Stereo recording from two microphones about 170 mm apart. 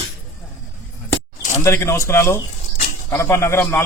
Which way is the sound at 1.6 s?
15° left (ahead or behind).